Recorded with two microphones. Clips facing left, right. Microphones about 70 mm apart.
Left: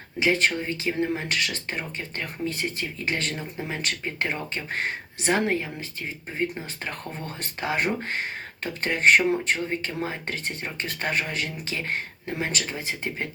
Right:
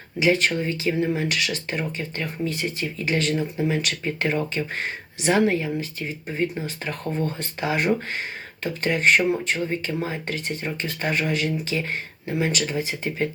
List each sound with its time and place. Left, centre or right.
0.2 s speech: left
7.6 s speech: left